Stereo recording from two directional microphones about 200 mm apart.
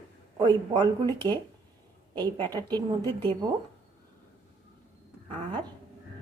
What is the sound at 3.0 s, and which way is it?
Speech, 10° left (ahead or behind).